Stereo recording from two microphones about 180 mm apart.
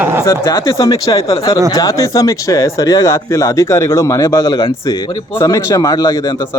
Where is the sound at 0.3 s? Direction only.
15° left (ahead or behind).